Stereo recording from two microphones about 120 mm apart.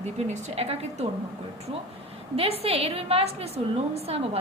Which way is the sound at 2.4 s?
55° right (ahead or behind).